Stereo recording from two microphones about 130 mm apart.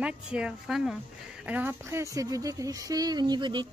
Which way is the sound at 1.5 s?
15° right (ahead or behind).